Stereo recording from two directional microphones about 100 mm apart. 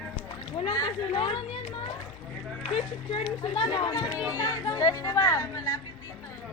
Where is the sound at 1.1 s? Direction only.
60° left (ahead or behind).